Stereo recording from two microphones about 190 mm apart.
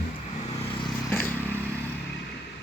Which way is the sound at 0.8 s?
15° left (ahead or behind).